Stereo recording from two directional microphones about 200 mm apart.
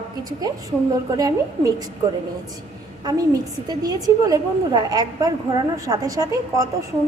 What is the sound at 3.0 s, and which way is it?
A woman's voice, 20° right (ahead or behind).